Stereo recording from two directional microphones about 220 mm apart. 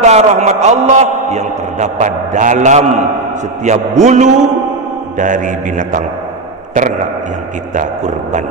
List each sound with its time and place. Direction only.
0.0 s a man's voice: 30° right (ahead or behind)
7.7 s a man's voice: 35° right (ahead or behind)